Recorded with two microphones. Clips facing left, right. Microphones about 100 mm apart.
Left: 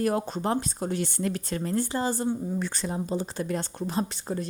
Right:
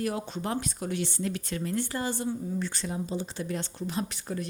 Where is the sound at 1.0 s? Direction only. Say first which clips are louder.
Left 3 dB; 50° left (ahead or behind).